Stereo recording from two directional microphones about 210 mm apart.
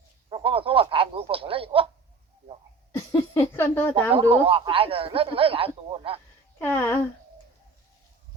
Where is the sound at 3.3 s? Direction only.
10° left (ahead or behind).